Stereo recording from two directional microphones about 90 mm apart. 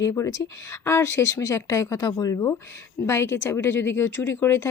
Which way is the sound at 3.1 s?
30° left (ahead or behind).